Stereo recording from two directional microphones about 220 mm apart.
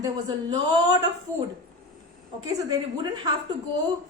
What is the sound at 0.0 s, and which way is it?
Speech, 15° right (ahead or behind).